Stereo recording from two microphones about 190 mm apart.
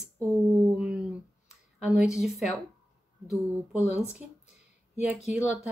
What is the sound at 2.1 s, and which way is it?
Speech, centre (ahead or behind).